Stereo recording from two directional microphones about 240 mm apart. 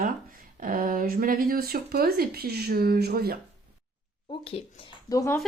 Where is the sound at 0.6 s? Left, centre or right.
Right.